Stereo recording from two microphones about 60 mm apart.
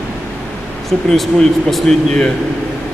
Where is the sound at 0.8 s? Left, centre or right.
Centre.